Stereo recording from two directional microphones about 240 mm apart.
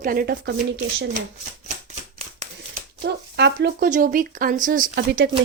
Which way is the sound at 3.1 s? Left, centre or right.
Right.